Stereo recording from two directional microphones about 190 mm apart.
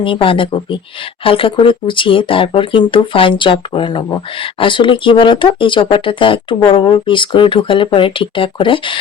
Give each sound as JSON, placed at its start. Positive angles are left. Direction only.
{"t": 0.0, "sound": "speech", "side_deg": 25}